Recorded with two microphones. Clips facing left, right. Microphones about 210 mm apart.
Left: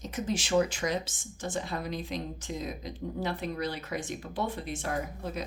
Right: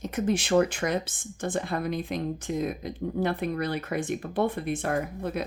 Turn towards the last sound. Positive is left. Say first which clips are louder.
# right 5 dB
turn(degrees=-60)  # may be behind; listen again after turning